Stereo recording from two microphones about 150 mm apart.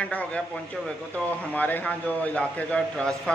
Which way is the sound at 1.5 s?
10° left (ahead or behind).